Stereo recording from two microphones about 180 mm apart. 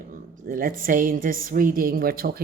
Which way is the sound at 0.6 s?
50° right (ahead or behind).